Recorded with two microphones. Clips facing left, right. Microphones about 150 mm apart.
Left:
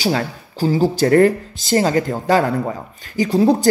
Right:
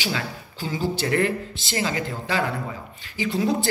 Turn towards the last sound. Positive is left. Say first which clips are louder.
# left 9 dB
turn(degrees=35)  # may be behind; listen again after turning